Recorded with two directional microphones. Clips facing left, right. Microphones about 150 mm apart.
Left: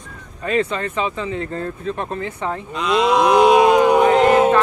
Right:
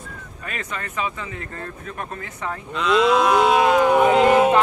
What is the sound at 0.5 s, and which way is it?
Speech, 30° left (ahead or behind).